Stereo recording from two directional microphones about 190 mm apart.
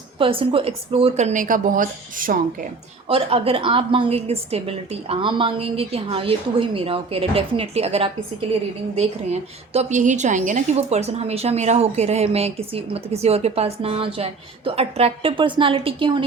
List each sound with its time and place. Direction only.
0.2 s a woman's voice: 30° right (ahead or behind); by 2.6 s 45° right (ahead or behind)
3.1 s a woman's voice: 30° right (ahead or behind)